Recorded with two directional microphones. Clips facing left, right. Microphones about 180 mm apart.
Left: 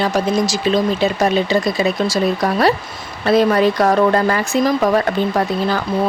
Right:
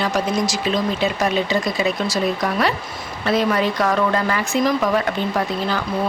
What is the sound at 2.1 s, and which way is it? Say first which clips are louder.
Speech: left 4 dB; 35° left (ahead or behind).